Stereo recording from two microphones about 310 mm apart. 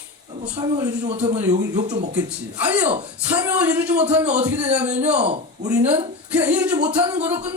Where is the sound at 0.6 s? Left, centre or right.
Centre.